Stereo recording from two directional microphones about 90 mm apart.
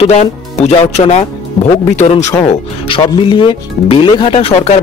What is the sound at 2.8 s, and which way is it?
Speech, 75° left (ahead or behind).